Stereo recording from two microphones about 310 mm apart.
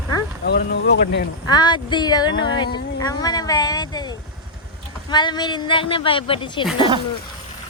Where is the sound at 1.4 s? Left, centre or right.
Centre.